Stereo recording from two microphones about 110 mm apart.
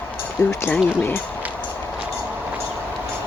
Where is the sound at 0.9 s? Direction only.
20° left (ahead or behind).